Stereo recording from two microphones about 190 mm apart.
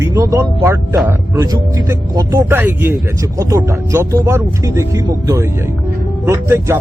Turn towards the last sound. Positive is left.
turn(degrees=-15)  # may be behind; listen again after turning